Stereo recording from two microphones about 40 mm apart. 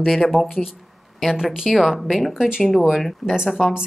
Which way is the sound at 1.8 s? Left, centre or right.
Centre.